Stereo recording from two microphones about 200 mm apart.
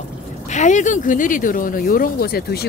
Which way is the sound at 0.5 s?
35° left (ahead or behind).